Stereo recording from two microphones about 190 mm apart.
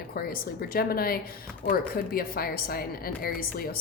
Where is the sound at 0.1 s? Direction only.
50° left (ahead or behind).